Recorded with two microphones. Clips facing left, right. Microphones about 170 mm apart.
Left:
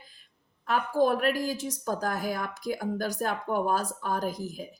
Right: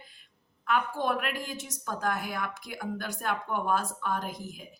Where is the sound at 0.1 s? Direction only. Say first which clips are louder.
Right 1 dB; 35° left (ahead or behind).